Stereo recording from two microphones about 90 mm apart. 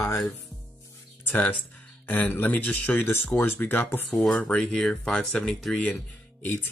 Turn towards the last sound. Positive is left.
turn(degrees=20)  # may be behind; listen again after turning